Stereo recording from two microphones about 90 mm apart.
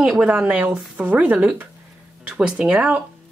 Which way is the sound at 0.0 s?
10° right (ahead or behind).